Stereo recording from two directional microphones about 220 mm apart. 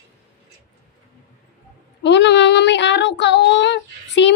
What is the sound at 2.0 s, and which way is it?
Child singing, 50° left (ahead or behind).